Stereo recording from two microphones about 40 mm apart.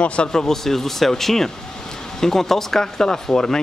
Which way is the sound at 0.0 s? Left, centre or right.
Left.